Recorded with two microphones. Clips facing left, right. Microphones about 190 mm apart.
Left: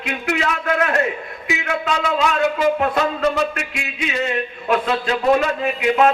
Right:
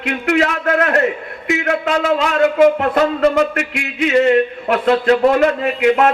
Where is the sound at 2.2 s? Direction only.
60° right (ahead or behind).